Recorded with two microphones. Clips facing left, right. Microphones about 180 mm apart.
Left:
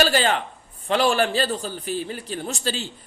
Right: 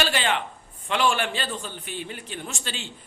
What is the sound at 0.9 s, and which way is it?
A man's voice, 40° left (ahead or behind).